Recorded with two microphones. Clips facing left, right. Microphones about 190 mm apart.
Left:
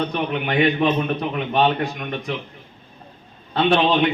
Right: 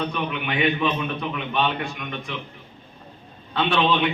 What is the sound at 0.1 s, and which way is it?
A man's voice, 40° left (ahead or behind).